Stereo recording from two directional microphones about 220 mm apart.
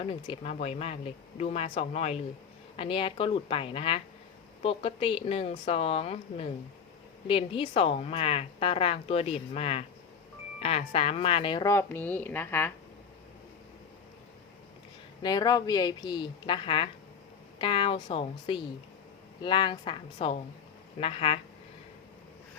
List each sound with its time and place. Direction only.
0.0 s a woman's voice: 25° left (ahead or behind)
15.2 s a woman's voice: 20° left (ahead or behind)